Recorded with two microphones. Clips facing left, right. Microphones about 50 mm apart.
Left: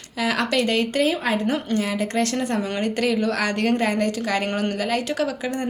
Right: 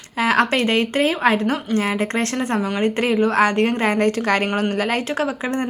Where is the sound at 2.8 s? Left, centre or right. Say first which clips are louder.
Right 4 dB; right.